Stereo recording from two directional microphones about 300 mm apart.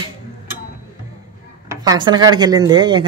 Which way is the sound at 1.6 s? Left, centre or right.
Centre.